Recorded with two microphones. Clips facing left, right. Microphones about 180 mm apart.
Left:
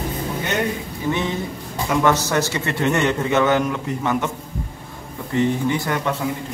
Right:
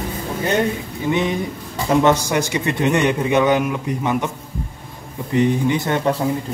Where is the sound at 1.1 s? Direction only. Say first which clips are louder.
Right 5 dB; 15° right (ahead or behind).